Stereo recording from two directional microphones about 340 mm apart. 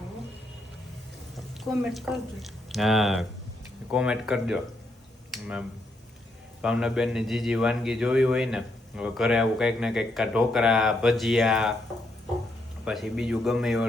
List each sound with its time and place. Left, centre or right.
1.7 s a man's voice: centre
5.3 s a sound: centre
6.6 s a man's voice: centre
12.8 s a man's voice: centre